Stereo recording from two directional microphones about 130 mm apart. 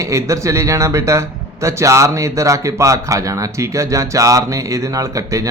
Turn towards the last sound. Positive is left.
turn(degrees=-25)  # may be behind; listen again after turning